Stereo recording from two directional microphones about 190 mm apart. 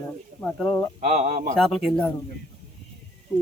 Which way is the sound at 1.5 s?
Centre (ahead or behind).